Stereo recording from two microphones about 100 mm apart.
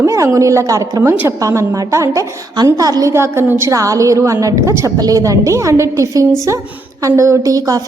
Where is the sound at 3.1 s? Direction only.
25° right (ahead or behind).